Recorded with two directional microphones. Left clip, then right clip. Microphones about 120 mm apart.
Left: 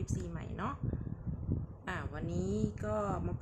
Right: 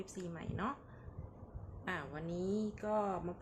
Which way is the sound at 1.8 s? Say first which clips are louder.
Right 1 dB; 10° left (ahead or behind).